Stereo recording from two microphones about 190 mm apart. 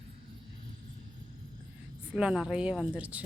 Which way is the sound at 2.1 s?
5° right (ahead or behind).